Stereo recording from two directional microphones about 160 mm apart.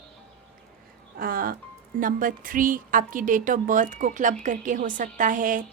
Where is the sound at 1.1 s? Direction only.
65° right (ahead or behind).